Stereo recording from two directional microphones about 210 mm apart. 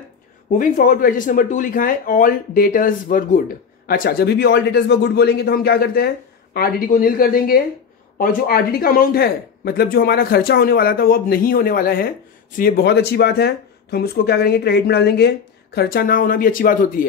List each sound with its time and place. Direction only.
0.5 s speech: 40° left (ahead or behind)